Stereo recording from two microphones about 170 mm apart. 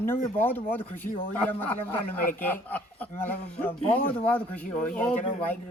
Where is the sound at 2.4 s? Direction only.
10° left (ahead or behind).